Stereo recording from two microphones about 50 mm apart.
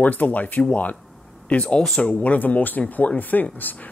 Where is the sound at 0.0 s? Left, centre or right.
Left.